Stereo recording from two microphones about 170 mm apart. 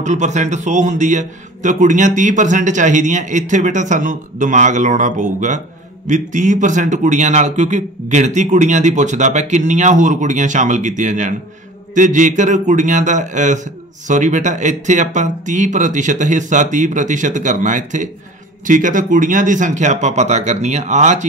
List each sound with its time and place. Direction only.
0.0 s a man's voice: 45° right (ahead or behind)